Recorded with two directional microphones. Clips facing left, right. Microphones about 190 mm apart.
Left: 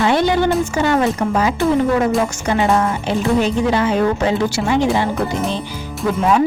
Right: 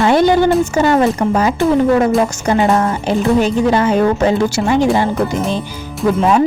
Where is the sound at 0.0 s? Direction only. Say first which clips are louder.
Right 4 dB; 45° right (ahead or behind).